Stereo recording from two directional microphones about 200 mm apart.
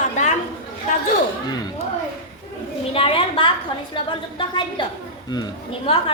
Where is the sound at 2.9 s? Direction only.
25° left (ahead or behind).